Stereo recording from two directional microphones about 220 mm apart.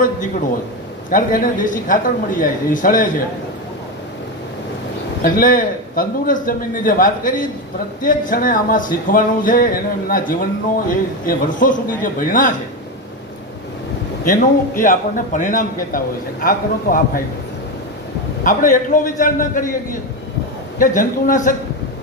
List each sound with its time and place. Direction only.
1.1 s speech: 40° left (ahead or behind)
5.2 s speech: 40° left (ahead or behind)
14.8 s speech: 35° left (ahead or behind)
18.4 s speech: 40° left (ahead or behind)
20.7 s speech: 40° left (ahead or behind)